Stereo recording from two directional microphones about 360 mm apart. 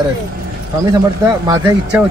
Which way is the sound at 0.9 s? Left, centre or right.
Centre.